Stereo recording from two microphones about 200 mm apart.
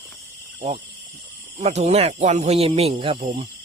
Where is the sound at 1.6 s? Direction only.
35° right (ahead or behind).